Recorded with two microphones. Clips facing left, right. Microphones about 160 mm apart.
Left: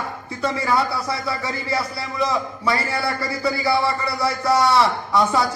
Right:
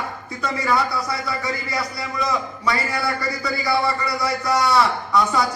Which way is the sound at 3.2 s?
30° left (ahead or behind).